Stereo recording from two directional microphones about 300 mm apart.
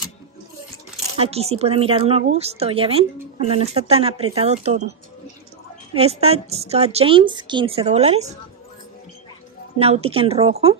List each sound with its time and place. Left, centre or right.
1.2 s a woman's voice: centre
5.9 s a woman's voice: centre
9.8 s a woman's voice: right